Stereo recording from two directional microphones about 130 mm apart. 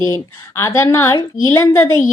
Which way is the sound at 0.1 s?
20° left (ahead or behind).